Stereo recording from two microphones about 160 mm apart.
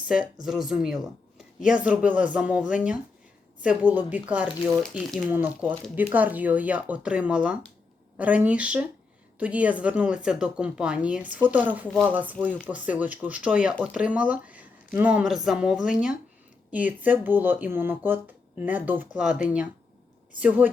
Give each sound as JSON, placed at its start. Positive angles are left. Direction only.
{"t": 0.4, "sound": "speech", "side_deg": -5}